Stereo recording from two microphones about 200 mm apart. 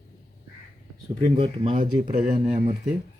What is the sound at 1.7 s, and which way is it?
Speech, 40° right (ahead or behind).